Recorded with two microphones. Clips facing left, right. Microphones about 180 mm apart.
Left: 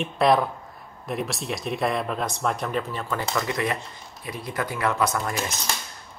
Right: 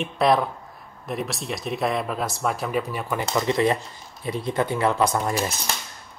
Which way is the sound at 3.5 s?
25° right (ahead or behind).